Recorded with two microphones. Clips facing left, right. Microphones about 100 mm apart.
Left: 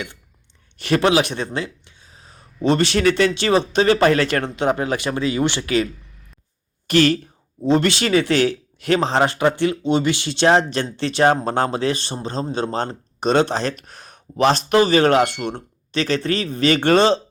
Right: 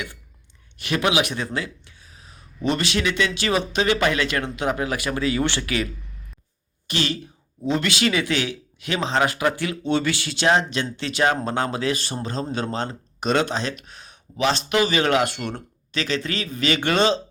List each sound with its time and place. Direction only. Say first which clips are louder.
0.8 s a man's voice: left 5 dB; 35° left (ahead or behind)
6.8 s speech: left 10 dB; 50° left (ahead or behind)
7.6 s a man's voice: left 5 dB; 35° left (ahead or behind)